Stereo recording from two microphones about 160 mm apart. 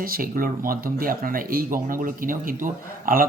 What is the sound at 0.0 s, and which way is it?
Speech, 65° right (ahead or behind).